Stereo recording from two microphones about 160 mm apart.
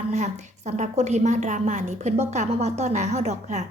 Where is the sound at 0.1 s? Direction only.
45° right (ahead or behind).